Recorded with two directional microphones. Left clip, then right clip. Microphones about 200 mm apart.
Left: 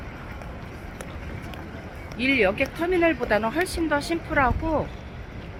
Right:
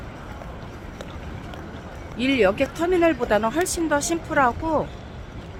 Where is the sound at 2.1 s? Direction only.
15° right (ahead or behind).